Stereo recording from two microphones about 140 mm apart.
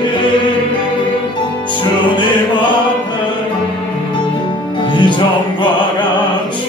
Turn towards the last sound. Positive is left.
turn(degrees=35)  # may be behind; listen again after turning